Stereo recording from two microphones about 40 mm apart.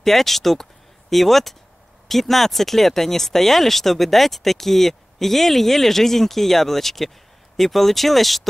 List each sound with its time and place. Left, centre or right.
0.0 s speech: centre